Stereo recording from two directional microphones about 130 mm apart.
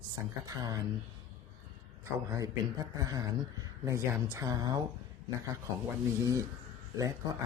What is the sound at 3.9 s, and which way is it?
Speech, 25° right (ahead or behind).